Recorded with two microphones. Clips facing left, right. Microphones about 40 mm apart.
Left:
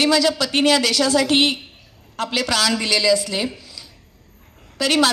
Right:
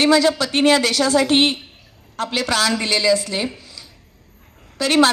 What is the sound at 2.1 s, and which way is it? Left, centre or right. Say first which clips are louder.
A man's voice: right 1 dB; right.